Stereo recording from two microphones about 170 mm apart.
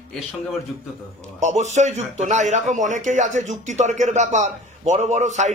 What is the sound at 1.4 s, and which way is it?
A man's voice, 40° right (ahead or behind).